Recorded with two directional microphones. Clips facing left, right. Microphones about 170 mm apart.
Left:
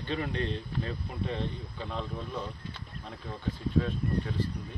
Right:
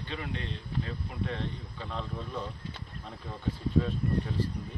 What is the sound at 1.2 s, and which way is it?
Speech, 15° left (ahead or behind).